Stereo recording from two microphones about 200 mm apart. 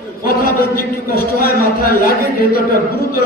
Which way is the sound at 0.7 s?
50° left (ahead or behind).